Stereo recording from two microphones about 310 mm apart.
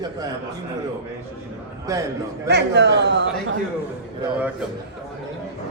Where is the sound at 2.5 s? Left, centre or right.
Right.